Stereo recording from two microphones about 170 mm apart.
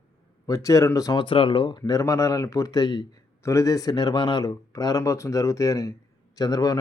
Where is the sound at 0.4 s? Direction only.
20° left (ahead or behind).